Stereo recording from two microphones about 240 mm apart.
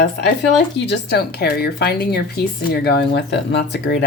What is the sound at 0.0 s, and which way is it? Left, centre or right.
A woman's voice, left.